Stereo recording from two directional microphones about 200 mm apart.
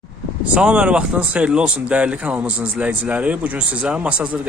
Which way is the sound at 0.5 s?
5° right (ahead or behind).